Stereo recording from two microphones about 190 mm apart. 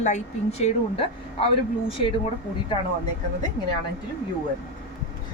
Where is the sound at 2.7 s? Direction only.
25° left (ahead or behind).